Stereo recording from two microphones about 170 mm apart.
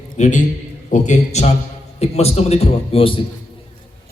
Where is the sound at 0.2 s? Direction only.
50° left (ahead or behind).